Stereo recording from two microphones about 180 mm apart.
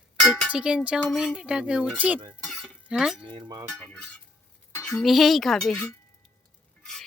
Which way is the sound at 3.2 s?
30° right (ahead or behind).